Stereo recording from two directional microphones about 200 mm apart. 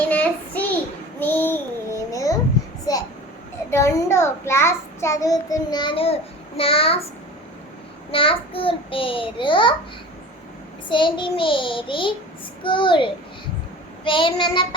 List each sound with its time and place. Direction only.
0.1 s child singing: 10° left (ahead or behind)
3.7 s a child's voice: 15° left (ahead or behind)
8.1 s a child's voice: 25° left (ahead or behind)
10.8 s a child's voice: 25° left (ahead or behind)